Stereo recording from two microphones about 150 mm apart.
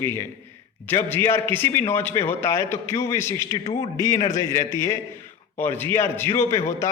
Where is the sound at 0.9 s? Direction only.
15° left (ahead or behind).